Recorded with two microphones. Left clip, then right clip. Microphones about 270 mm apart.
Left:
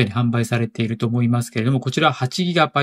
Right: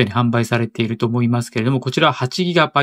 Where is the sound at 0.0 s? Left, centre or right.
Centre.